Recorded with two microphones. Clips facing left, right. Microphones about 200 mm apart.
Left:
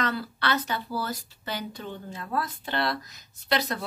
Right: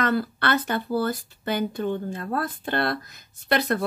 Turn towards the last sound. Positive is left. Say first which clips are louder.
# right 4 dB
turn(degrees=-55)  # may be behind; listen again after turning